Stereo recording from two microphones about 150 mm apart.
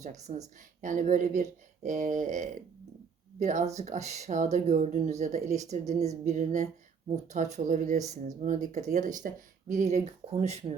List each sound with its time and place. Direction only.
0.0 s speech: 50° right (ahead or behind)